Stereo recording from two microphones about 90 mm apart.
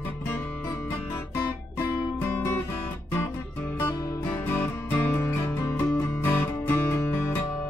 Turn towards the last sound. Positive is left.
turn(degrees=25)  # may be behind; listen again after turning